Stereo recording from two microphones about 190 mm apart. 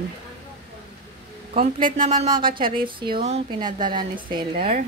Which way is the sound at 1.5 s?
45° right (ahead or behind).